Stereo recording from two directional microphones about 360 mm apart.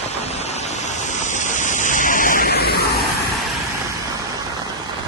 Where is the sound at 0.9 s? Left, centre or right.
Centre.